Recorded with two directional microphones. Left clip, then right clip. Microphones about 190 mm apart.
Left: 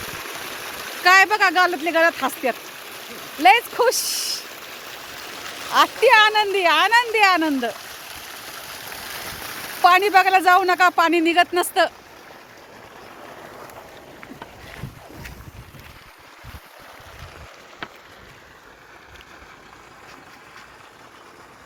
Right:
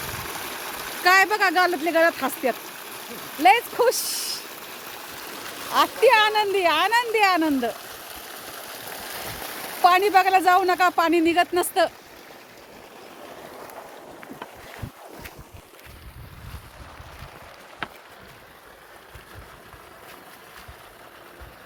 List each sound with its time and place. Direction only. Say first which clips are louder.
0.0 s a sound: left 1 dB; 30° right (ahead or behind)
1.0 s speech: left 3 dB; 5° right (ahead or behind)
2.6 s a sound: left 1 dB; 35° right (ahead or behind)
3.4 s speech: left 2 dB; centre (ahead or behind)
4.4 s stream: left 2 dB; 35° right (ahead or behind)
6.1 s speech: left 3 dB; 5° left (ahead or behind)
7.7 s stream: left 1 dB; 25° right (ahead or behind)
9.8 s speech: left 3 dB; centre (ahead or behind)